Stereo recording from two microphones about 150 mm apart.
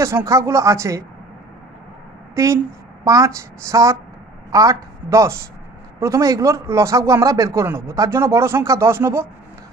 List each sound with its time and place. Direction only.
0.0 s speech: 20° right (ahead or behind)
2.3 s speech: 20° right (ahead or behind)